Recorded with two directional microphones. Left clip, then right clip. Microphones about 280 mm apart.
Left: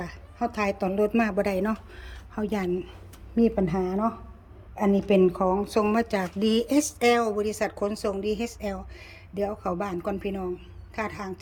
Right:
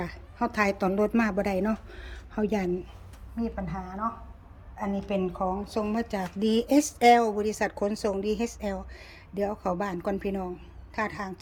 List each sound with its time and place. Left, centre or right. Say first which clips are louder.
0.0 s a woman's voice: even; centre
3.3 s a woman's voice: left 11 dB; left
3.7 s speech: left 6 dB; left
4.9 s a woman's voice: left 9 dB; left; by 11.3 s centre